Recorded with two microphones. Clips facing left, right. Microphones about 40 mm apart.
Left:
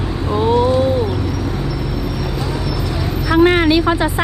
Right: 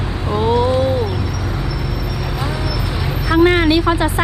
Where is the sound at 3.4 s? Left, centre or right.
Left.